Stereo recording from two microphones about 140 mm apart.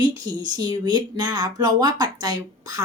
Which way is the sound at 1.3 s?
30° right (ahead or behind).